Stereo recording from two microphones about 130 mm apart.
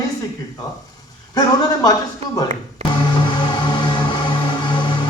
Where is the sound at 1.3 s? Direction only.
30° left (ahead or behind).